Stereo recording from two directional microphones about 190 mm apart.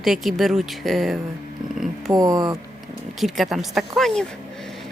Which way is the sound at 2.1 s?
20° right (ahead or behind).